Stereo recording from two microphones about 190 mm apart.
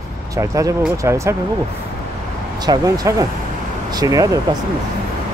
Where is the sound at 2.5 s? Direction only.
20° right (ahead or behind).